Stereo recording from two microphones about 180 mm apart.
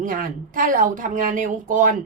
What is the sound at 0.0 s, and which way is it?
A woman's voice, 50° right (ahead or behind).